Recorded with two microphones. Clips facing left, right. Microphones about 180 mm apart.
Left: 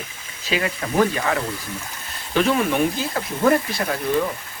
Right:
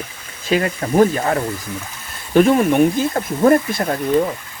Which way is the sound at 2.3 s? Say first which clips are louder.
Right 7 dB; 45° right (ahead or behind).